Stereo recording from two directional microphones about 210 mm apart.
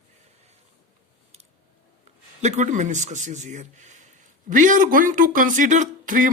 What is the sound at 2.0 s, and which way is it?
Speech, 30° right (ahead or behind).